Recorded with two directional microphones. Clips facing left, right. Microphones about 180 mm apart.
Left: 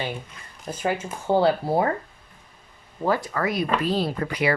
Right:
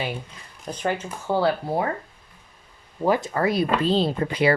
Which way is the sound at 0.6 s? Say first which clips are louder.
Even; 5° left (ahead or behind).